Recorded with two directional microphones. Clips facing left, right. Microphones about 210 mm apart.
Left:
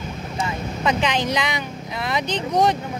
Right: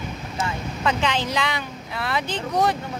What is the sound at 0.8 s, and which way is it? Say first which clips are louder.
Speech: left 2 dB; 15° left (ahead or behind).